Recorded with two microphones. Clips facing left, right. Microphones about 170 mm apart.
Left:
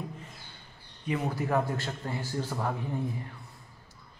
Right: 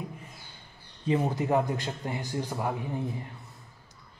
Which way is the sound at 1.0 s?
25° right (ahead or behind).